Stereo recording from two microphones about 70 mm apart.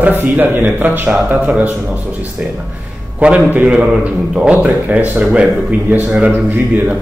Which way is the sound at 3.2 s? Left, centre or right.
Right.